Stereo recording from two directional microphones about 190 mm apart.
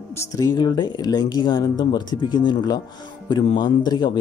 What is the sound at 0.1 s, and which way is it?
Speech, 15° left (ahead or behind).